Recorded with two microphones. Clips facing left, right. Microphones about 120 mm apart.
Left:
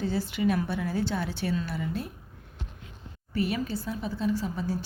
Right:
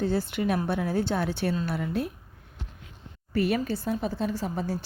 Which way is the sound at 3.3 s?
55° right (ahead or behind).